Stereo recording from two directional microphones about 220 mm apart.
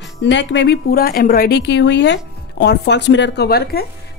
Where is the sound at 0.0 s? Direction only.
55° left (ahead or behind).